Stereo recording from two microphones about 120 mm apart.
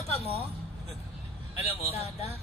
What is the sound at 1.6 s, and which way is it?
Speech, 60° left (ahead or behind).